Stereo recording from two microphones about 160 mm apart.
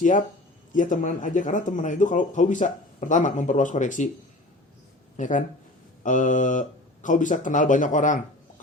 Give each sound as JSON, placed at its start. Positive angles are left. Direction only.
{"t": 0.0, "sound": "speech", "side_deg": 55}
{"t": 5.1, "sound": "speech", "side_deg": 50}